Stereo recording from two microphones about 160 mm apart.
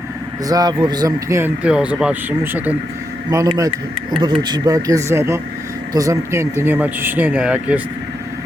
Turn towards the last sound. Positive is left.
turn(degrees=-10)  # may be behind; listen again after turning